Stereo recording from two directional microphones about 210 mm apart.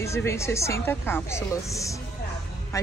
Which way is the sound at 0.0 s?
15° left (ahead or behind).